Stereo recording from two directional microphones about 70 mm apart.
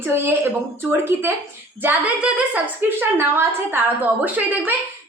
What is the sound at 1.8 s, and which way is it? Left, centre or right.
Speech, centre.